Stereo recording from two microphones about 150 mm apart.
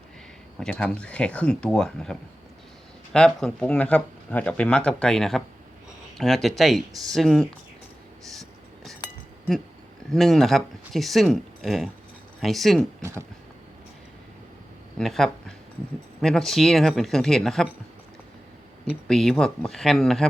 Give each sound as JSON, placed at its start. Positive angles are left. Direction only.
{"t": 0.6, "sound": "speech", "side_deg": 5}
{"t": 8.3, "sound": "vehicle", "side_deg": 0}
{"t": 10.1, "sound": "speech", "side_deg": 0}
{"t": 13.0, "sound": "speech", "side_deg": -15}
{"t": 14.9, "sound": "speech", "side_deg": 5}
{"t": 19.0, "sound": "speech", "side_deg": 5}